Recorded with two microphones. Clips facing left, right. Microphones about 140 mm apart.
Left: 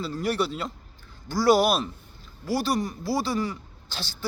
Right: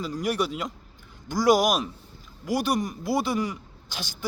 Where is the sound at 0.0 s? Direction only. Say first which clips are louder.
Even; 15° right (ahead or behind).